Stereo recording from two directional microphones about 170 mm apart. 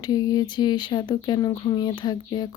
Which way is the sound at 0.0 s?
20° left (ahead or behind).